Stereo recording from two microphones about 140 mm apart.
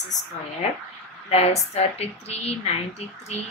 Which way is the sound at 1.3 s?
50° left (ahead or behind).